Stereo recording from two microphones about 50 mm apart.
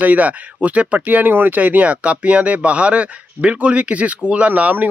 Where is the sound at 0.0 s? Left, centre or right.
Right.